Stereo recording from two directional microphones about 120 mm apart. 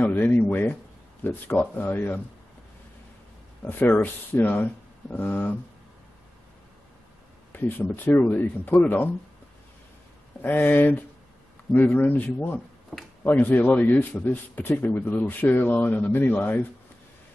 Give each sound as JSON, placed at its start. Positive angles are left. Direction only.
{"t": 0.0, "sound": "a man's voice", "side_deg": 15}
{"t": 3.6, "sound": "a man's voice", "side_deg": 15}
{"t": 7.5, "sound": "a man's voice", "side_deg": 20}
{"t": 10.4, "sound": "a man's voice", "side_deg": 15}